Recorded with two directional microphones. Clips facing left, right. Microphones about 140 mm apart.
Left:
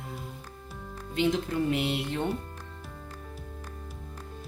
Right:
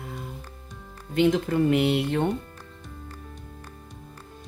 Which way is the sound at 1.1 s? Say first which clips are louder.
Right 5 dB; 55° right (ahead or behind).